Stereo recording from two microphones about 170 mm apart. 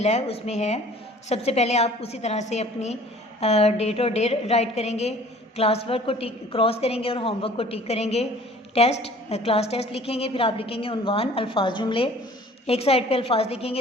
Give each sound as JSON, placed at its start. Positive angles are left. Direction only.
{"t": 0.0, "sound": "a woman's voice", "side_deg": 40}